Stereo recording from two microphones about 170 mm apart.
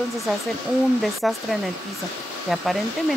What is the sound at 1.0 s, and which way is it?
Speech, centre (ahead or behind).